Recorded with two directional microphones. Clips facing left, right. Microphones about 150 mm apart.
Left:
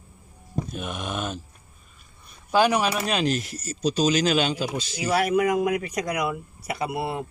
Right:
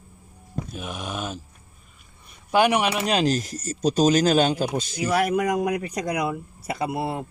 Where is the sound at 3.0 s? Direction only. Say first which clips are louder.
Right 3 dB; 35° right (ahead or behind); by 5.6 s 50° right (ahead or behind).